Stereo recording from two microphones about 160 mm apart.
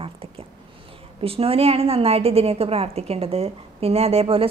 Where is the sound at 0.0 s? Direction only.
35° right (ahead or behind).